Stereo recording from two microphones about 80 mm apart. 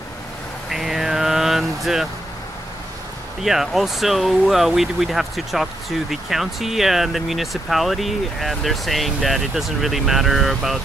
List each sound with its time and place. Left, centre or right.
0.7 s vehicle: centre
3.4 s speech: centre